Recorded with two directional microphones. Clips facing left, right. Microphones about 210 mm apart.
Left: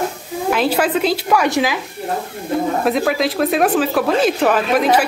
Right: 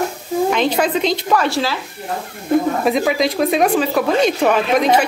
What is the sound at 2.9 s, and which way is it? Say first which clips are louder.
Speech: right 1 dB; centre (ahead or behind).